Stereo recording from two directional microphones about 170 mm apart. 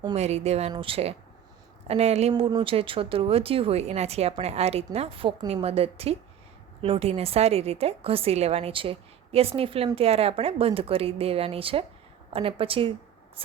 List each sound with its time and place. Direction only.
0.0 s a woman's voice: 40° right (ahead or behind)
2.3 s a woman's voice: 25° right (ahead or behind)